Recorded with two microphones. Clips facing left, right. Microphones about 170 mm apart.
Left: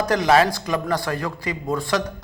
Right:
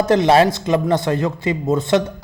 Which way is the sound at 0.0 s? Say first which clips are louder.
Right 4 dB; 25° right (ahead or behind).